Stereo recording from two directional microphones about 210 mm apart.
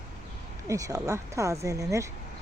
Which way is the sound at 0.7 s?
15° right (ahead or behind).